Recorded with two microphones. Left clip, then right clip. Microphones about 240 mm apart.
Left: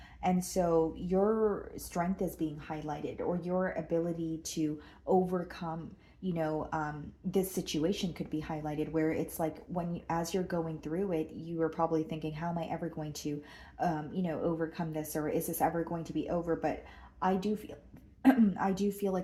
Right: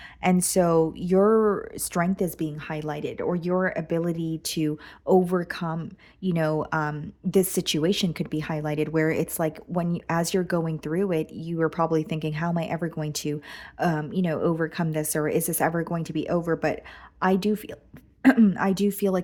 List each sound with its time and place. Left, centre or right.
0.2 s speech: right